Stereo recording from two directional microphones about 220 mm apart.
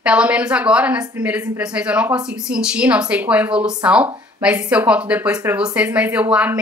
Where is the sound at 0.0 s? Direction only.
5° right (ahead or behind).